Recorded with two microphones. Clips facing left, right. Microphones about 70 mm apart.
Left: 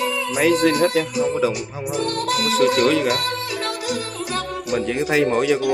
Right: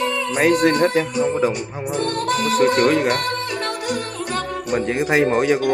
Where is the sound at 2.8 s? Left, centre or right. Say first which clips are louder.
Right 1 dB; right.